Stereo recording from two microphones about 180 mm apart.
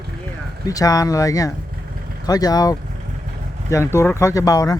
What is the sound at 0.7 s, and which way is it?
Speech, 20° left (ahead or behind).